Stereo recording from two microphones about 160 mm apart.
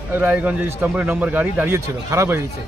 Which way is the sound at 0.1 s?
10° right (ahead or behind).